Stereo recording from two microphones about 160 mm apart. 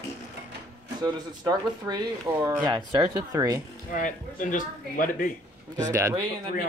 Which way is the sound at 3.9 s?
55° left (ahead or behind).